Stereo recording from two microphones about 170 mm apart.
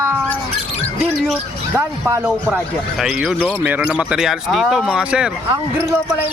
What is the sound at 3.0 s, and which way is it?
Speech, 5° right (ahead or behind).